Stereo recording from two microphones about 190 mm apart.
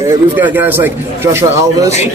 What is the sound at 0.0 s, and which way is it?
Speech, 10° right (ahead or behind).